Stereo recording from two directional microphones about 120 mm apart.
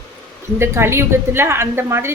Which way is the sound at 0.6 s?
20° right (ahead or behind).